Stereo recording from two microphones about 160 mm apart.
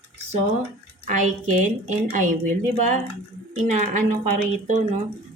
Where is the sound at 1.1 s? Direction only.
55° right (ahead or behind).